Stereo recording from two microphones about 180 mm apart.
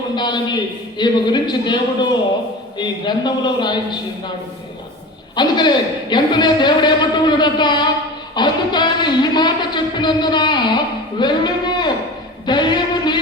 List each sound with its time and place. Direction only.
0.2 s a man's voice: 25° left (ahead or behind)
5.4 s a man's voice: 25° left (ahead or behind)
12.5 s music: 25° left (ahead or behind)